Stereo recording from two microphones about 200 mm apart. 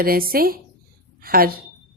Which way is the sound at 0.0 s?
50° right (ahead or behind).